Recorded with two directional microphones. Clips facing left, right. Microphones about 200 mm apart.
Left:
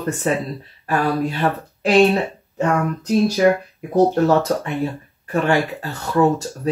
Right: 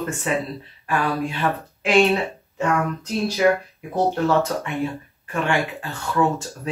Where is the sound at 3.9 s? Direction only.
40° left (ahead or behind).